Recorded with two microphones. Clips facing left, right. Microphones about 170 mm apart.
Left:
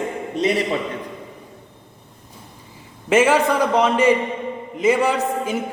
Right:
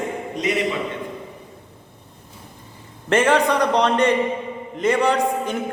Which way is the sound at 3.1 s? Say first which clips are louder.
Left 1 dB; 5° left (ahead or behind).